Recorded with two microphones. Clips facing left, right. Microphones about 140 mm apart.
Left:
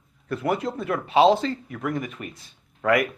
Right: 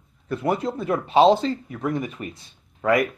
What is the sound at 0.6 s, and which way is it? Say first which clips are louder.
Speech: right 2 dB; centre (ahead or behind).